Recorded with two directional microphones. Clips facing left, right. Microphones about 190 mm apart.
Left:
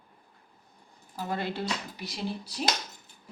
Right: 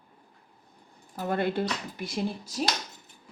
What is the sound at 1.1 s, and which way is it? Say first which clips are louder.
Speech: right 5 dB; 55° right (ahead or behind).